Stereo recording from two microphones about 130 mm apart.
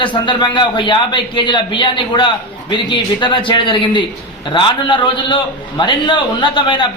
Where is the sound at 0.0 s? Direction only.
40° left (ahead or behind).